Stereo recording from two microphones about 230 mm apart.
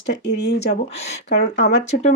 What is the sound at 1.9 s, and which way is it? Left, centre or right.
Speech, left.